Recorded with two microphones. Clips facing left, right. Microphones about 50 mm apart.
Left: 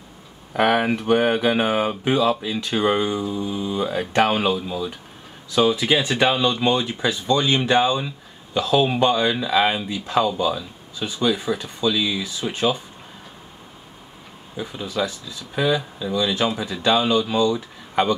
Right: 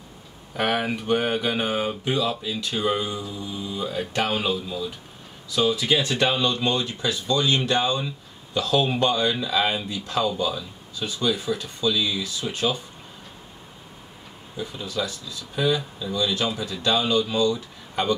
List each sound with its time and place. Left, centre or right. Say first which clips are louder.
0.6 s speech: left 6 dB; centre
14.6 s speech: left 4 dB; centre